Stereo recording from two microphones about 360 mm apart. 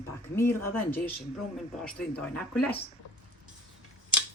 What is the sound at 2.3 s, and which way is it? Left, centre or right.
Speech, centre.